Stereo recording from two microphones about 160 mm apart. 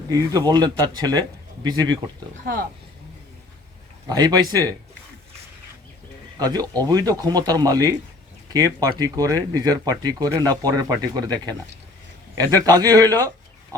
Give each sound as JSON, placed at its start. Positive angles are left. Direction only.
{"t": 0.1, "sound": "speech", "side_deg": -20}
{"t": 2.5, "sound": "speech", "side_deg": -75}
{"t": 4.1, "sound": "speech", "side_deg": -25}
{"t": 6.4, "sound": "speech", "side_deg": -25}